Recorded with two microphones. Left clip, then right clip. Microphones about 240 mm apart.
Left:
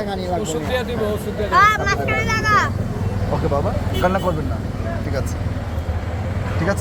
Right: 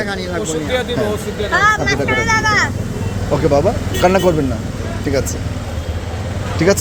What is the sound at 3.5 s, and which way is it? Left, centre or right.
Speech, right.